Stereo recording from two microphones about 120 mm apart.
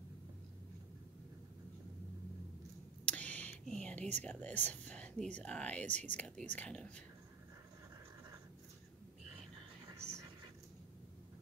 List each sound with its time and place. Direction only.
3.1 s whispering: 10° left (ahead or behind)
4.2 s speech: 15° left (ahead or behind)
9.8 s a sound: 25° right (ahead or behind)